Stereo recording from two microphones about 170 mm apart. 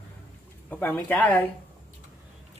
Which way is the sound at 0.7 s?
10° left (ahead or behind).